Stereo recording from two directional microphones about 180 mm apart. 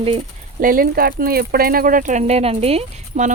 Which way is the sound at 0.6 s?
50° right (ahead or behind).